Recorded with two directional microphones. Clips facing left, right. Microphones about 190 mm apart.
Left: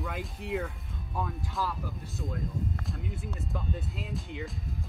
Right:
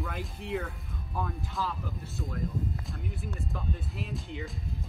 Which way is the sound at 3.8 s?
20° left (ahead or behind).